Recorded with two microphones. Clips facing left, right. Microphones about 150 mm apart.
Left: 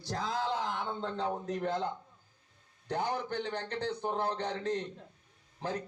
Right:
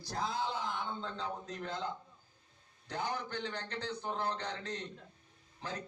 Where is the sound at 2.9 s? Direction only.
55° left (ahead or behind).